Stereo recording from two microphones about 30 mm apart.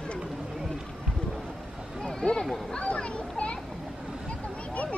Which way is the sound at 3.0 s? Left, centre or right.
Left.